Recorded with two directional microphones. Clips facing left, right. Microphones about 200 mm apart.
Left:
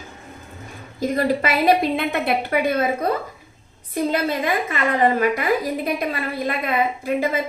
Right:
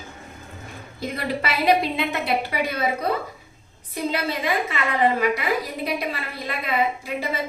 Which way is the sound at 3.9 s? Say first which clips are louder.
Left 4 dB; 50° left (ahead or behind).